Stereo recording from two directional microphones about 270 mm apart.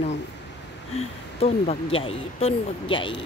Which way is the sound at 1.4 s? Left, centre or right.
Left.